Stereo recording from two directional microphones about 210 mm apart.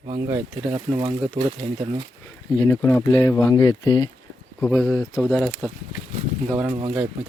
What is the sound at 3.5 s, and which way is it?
Speech, 20° left (ahead or behind).